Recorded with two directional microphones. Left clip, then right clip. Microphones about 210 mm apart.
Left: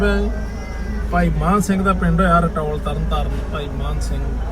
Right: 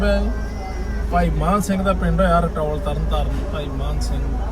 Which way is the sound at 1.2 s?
Centre (ahead or behind).